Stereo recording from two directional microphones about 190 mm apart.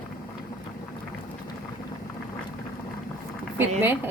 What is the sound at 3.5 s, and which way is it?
Speech, 10° right (ahead or behind).